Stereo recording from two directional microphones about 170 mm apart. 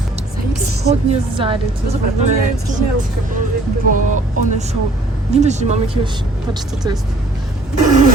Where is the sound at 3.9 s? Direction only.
50° right (ahead or behind).